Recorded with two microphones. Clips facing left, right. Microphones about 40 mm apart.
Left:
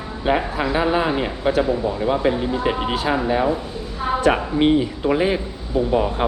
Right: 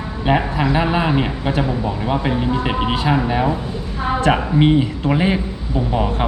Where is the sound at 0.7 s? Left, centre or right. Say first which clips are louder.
Even; centre.